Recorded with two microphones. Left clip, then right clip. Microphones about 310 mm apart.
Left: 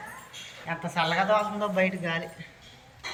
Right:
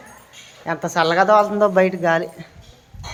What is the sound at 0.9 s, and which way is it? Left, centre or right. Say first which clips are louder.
A man's voice: right 10 dB; centre.